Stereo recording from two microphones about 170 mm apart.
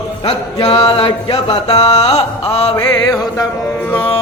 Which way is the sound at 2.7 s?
20° left (ahead or behind).